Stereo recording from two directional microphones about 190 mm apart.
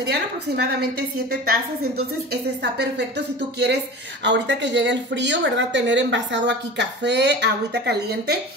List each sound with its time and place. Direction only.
0.0 s a woman's voice: 60° right (ahead or behind)
2.4 s a woman's voice: 60° right (ahead or behind)